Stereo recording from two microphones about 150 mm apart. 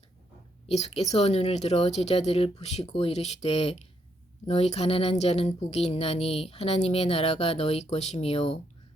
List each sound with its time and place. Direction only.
0.7 s speech: 45° left (ahead or behind)